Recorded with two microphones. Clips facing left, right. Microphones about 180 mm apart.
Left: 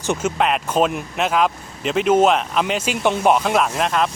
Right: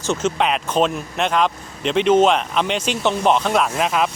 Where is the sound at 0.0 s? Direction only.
10° left (ahead or behind).